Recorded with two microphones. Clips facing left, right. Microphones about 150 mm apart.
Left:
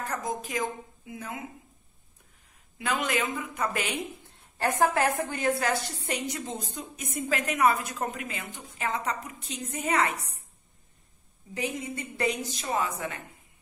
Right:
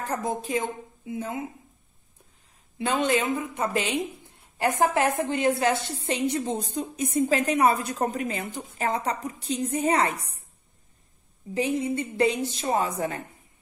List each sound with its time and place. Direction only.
0.1 s a woman's voice: 30° right (ahead or behind)
2.8 s a woman's voice: 30° right (ahead or behind)
11.5 s a woman's voice: 30° right (ahead or behind)